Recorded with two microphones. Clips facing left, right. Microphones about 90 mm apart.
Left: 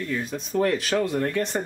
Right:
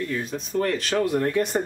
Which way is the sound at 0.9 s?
10° right (ahead or behind).